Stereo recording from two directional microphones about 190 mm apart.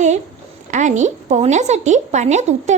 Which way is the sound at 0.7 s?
40° right (ahead or behind).